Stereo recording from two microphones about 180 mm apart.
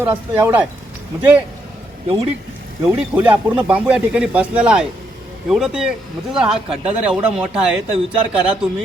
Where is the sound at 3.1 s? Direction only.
10° right (ahead or behind).